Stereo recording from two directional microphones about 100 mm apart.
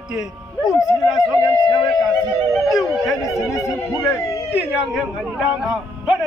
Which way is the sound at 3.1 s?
35° left (ahead or behind).